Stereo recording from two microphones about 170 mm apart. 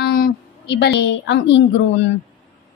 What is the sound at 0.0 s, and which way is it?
A woman's voice, 70° left (ahead or behind).